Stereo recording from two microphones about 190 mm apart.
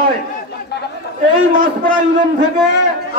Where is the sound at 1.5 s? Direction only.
45° right (ahead or behind).